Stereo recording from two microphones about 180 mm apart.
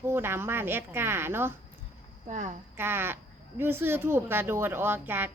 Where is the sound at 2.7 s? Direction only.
10° right (ahead or behind).